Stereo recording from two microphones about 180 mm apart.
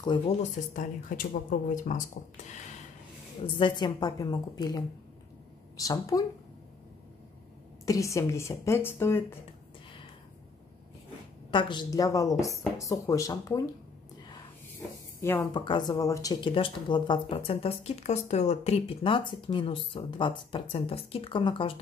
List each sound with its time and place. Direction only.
0.4 s speech: 45° left (ahead or behind)
3.5 s speech: 25° left (ahead or behind)
7.8 s speech: 20° left (ahead or behind)
11.5 s speech: 25° left (ahead or behind)
15.1 s speech: 10° left (ahead or behind)
15.5 s speech: 25° left (ahead or behind)